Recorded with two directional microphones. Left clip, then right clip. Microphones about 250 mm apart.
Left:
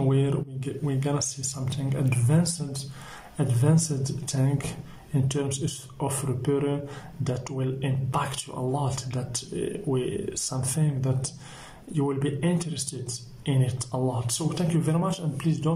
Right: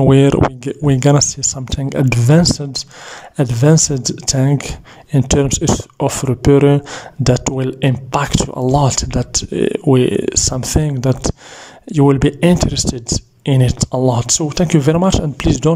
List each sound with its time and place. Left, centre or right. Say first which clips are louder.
0.1 s speech: right 17 dB; right